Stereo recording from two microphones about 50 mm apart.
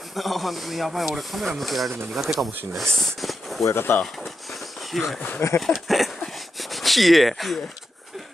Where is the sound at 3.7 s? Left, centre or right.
Left.